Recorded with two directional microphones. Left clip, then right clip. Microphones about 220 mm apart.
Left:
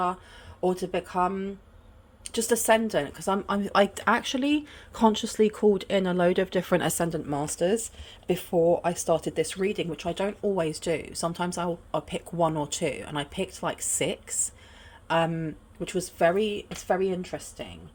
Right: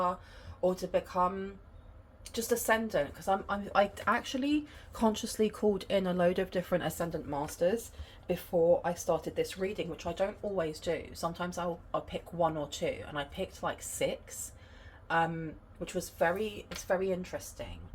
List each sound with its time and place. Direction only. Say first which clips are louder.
0.6 s a woman's voice: left 3 dB; 55° left (ahead or behind); by 6.7 s 30° left (ahead or behind)
6.7 s speech: left 7 dB; 55° left (ahead or behind)